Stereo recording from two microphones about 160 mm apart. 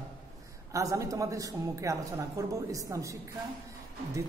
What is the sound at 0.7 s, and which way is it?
A man's voice, 20° right (ahead or behind).